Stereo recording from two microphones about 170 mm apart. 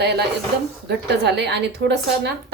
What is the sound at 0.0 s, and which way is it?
A woman's voice, 75° right (ahead or behind).